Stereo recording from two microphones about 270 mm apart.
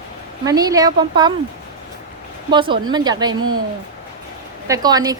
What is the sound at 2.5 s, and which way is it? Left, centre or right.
A woman's voice, centre.